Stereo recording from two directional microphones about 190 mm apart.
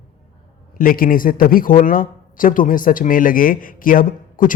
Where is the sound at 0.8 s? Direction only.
50° left (ahead or behind).